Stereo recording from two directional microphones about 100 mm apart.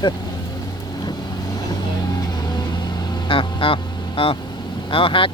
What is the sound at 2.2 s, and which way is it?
Vehicle, 45° left (ahead or behind).